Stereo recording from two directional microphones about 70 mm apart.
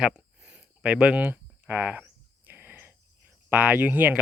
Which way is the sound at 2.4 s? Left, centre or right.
Right.